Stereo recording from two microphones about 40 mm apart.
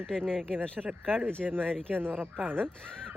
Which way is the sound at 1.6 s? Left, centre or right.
Left.